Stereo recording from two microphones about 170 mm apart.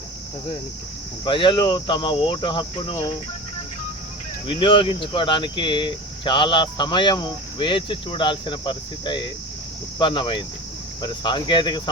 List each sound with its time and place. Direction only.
1.2 s speech: 30° left (ahead or behind)
4.4 s speech: 30° left (ahead or behind)